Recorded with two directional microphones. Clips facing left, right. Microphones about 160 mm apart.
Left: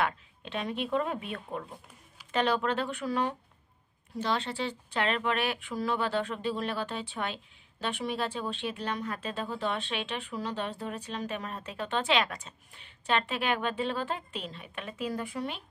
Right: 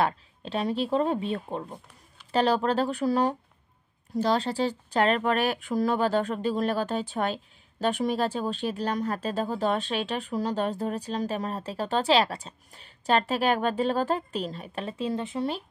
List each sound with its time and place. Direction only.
0.0 s speech: 35° right (ahead or behind)